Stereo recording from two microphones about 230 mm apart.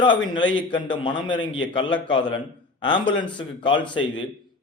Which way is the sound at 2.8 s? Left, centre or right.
Centre.